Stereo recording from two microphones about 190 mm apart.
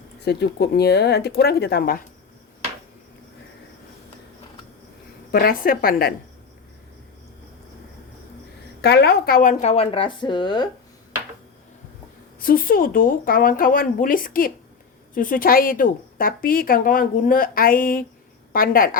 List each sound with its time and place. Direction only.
0.3 s speech: 60° left (ahead or behind)
5.3 s a woman's voice: 50° left (ahead or behind)
8.8 s speech: 60° left (ahead or behind); by 10.7 s 25° left (ahead or behind)
12.4 s a woman's voice: 50° left (ahead or behind)